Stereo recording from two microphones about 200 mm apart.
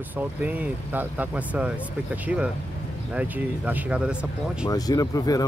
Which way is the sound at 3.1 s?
5° right (ahead or behind).